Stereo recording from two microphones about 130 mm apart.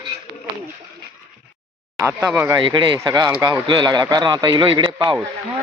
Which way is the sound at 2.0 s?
20° right (ahead or behind).